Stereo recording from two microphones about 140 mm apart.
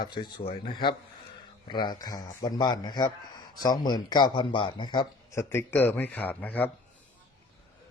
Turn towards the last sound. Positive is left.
turn(degrees=10)  # may be behind; listen again after turning